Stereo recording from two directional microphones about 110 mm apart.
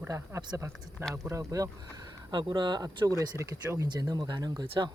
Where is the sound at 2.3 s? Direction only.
45° right (ahead or behind).